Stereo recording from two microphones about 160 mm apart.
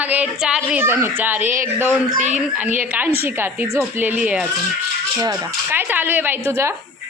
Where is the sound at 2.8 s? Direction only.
10° right (ahead or behind).